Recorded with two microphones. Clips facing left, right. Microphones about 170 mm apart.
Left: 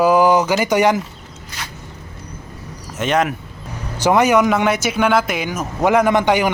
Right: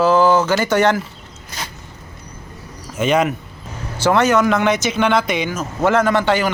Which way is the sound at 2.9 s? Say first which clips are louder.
Right 2 dB; centre (ahead or behind).